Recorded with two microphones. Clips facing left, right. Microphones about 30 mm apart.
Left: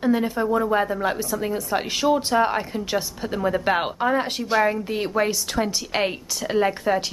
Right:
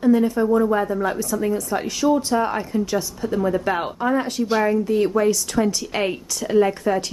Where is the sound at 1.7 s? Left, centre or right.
Left.